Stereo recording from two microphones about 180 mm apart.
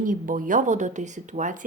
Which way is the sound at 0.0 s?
50° right (ahead or behind).